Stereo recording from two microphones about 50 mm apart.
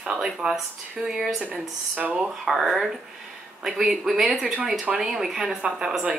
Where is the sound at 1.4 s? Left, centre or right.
Right.